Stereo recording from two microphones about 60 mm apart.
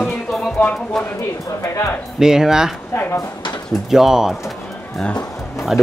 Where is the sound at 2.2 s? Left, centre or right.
Centre.